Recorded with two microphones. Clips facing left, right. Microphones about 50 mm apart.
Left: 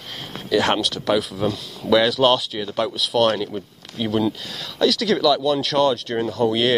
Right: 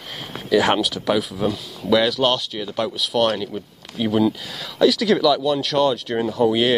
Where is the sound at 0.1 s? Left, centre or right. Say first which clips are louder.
Right 2 dB; centre.